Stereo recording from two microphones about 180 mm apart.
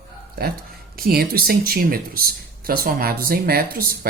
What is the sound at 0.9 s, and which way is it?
Speech, 55° right (ahead or behind).